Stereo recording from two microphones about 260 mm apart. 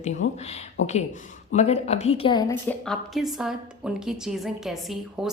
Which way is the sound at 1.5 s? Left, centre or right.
Left.